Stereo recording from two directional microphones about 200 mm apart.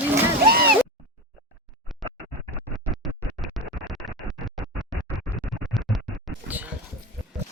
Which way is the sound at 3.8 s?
Centre (ahead or behind).